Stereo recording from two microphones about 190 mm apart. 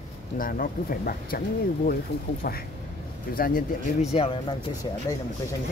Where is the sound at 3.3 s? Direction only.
50° left (ahead or behind).